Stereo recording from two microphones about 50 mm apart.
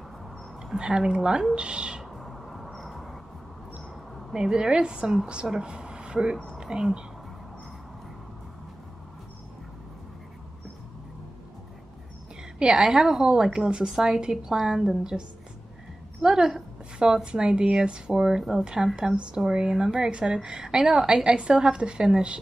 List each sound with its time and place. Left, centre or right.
0.7 s a woman's voice: centre
2.1 s a sound: centre
4.3 s a woman's voice: centre
12.5 s a woman's voice: centre